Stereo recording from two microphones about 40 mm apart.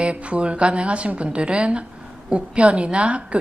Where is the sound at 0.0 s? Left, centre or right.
Right.